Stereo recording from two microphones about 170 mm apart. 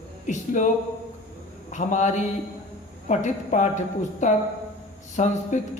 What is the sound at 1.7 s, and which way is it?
A woman's voice, 45° left (ahead or behind).